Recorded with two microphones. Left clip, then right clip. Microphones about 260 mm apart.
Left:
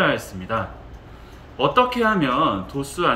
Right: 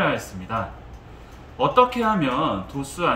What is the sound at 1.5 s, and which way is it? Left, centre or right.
Speech, centre.